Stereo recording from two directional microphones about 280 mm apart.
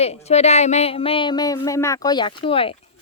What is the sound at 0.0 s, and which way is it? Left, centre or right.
Speech, left.